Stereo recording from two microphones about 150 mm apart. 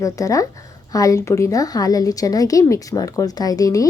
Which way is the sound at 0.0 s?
20° left (ahead or behind).